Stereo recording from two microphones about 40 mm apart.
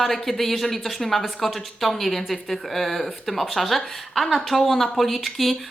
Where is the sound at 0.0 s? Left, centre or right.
Centre.